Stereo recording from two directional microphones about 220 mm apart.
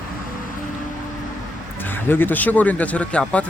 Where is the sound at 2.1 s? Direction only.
10° left (ahead or behind).